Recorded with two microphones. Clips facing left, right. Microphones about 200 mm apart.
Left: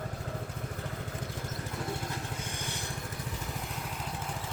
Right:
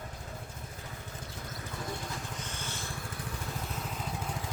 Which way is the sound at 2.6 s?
15° left (ahead or behind).